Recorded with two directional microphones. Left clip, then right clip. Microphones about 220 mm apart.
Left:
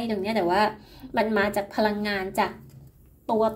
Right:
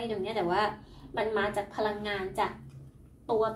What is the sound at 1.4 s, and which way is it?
Speech, 50° left (ahead or behind).